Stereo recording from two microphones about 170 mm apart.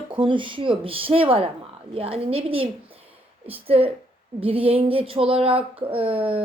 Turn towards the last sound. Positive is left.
turn(degrees=-30)  # may be behind; listen again after turning